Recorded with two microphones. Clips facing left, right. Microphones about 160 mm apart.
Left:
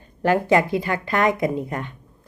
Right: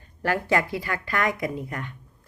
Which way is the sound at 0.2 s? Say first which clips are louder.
Left 6 dB; 20° left (ahead or behind).